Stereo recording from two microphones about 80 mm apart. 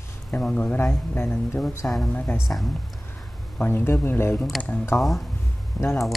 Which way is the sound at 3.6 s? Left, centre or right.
Left.